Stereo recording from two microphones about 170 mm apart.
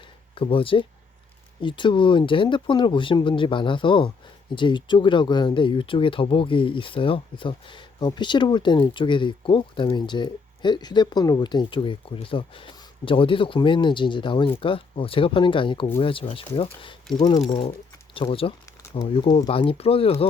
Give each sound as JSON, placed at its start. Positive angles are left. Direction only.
{"t": 0.3, "sound": "speech", "side_deg": 30}